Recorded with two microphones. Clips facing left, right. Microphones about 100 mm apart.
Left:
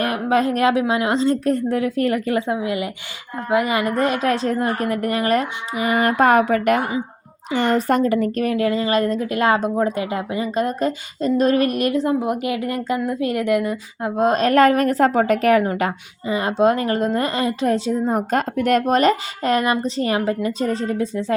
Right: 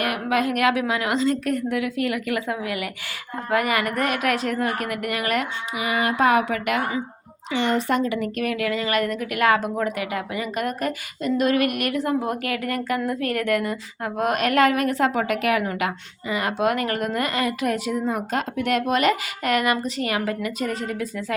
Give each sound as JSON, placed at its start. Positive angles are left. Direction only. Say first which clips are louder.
{"t": 0.0, "sound": "a woman's voice", "louder": "left 4 dB", "side_deg": 30}